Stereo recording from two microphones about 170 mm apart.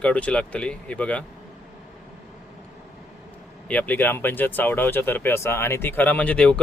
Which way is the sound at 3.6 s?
10° left (ahead or behind).